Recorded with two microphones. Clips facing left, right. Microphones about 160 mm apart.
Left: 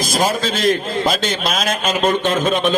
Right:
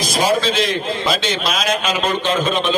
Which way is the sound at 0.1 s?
50° left (ahead or behind).